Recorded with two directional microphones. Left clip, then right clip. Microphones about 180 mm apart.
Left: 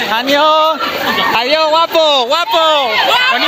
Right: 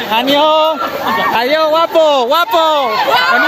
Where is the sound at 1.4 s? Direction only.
15° right (ahead or behind).